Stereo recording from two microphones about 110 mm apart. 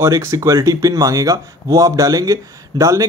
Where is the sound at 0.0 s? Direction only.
25° right (ahead or behind).